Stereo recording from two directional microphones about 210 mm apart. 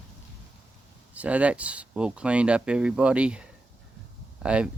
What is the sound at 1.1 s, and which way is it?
Speech, 5° right (ahead or behind).